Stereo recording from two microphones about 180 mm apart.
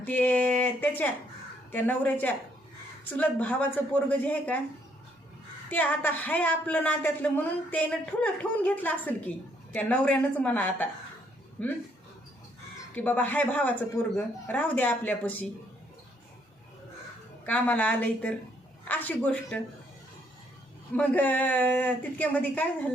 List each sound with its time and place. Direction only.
0.0 s speech: 10° left (ahead or behind)
5.7 s speech: 10° left (ahead or behind)
13.0 s speech: 10° left (ahead or behind)
17.4 s speech: 10° left (ahead or behind)
20.9 s speech: 10° left (ahead or behind)